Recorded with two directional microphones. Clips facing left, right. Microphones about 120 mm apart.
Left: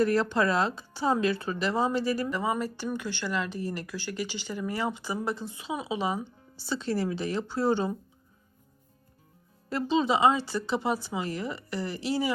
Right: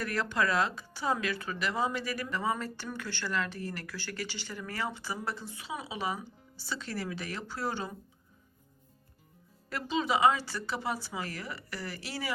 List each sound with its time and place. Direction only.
0.0 s speech: 30° left (ahead or behind)
2.3 s speech: 15° left (ahead or behind)
9.6 s speech: 25° left (ahead or behind)